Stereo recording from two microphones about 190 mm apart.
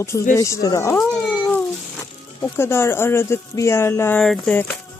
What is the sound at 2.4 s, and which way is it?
Speech, 10° left (ahead or behind).